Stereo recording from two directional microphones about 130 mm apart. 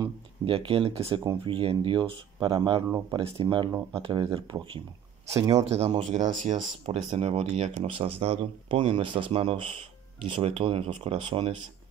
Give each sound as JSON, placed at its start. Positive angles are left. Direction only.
{"t": 0.5, "sound": "speech", "side_deg": -45}
{"t": 5.3, "sound": "speech", "side_deg": -25}
{"t": 5.6, "sound": "speech", "side_deg": -60}
{"t": 6.1, "sound": "speech", "side_deg": -70}